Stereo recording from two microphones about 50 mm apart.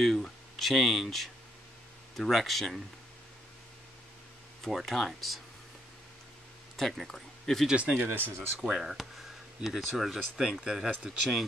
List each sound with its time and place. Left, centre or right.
0.0 s speech: centre
2.1 s speech: centre
4.6 s speech: centre
6.8 s speech: centre
8.0 s speech: right
8.5 s speech: centre